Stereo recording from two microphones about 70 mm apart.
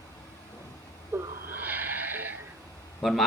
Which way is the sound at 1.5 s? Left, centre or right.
Right.